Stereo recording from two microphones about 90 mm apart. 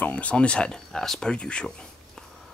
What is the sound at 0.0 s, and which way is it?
Speech, 15° left (ahead or behind).